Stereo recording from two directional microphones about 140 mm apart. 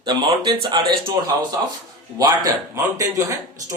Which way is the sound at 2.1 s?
25° right (ahead or behind).